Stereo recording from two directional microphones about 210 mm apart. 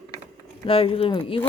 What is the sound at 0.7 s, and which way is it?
Speech, 25° left (ahead or behind).